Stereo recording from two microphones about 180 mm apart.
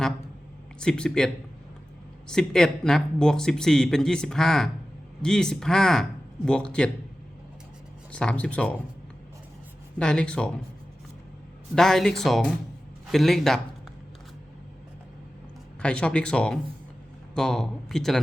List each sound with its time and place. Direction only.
0.8 s speech: 5° left (ahead or behind)
8.1 s speech: 5° left (ahead or behind)
10.0 s speech: 5° left (ahead or behind)
11.7 s speech: centre (ahead or behind)
15.8 s speech: 5° left (ahead or behind)